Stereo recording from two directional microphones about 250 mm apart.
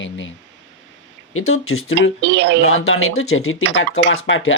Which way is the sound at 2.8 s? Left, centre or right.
Left.